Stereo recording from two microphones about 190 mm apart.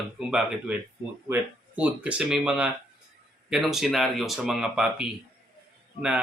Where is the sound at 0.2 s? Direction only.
5° right (ahead or behind).